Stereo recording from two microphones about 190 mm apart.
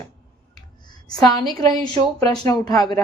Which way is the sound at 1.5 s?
20° left (ahead or behind).